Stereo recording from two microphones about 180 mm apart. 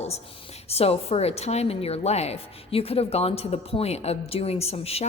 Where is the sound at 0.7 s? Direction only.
35° left (ahead or behind).